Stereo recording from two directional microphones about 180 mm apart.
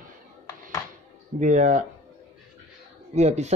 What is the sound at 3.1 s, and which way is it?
Speech, 40° right (ahead or behind).